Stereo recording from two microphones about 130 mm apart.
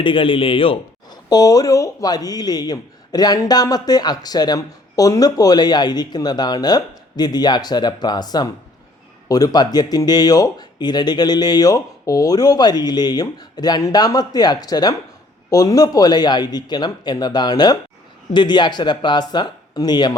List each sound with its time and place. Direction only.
0.0 s a man's voice: 40° left (ahead or behind)
1.3 s speech: 30° left (ahead or behind)